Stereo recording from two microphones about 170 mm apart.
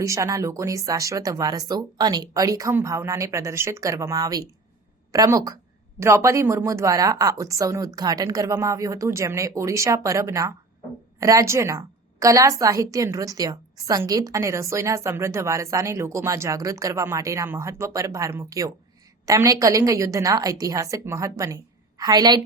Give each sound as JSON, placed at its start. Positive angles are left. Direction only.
{"t": 0.0, "sound": "a woman's voice", "side_deg": -20}